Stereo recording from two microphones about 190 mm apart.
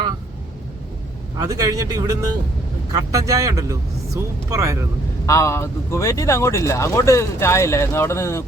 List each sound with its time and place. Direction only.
1.4 s a man's voice: 20° right (ahead or behind)
5.2 s speech: 15° left (ahead or behind)